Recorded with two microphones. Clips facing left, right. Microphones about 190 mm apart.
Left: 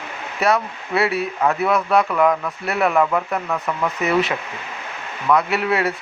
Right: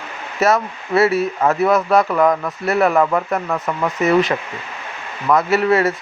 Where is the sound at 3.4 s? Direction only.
20° right (ahead or behind).